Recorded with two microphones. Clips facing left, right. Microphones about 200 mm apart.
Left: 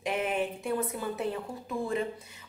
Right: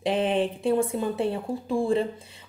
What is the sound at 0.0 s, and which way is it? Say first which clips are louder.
A woman's voice: right 6 dB; 30° right (ahead or behind).